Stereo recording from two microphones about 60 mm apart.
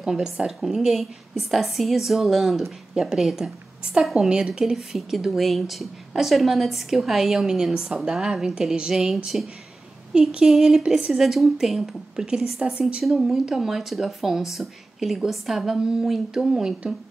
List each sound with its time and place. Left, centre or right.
0.0 s a woman's voice: centre
4.7 s a woman's voice: centre
10.1 s a woman's voice: centre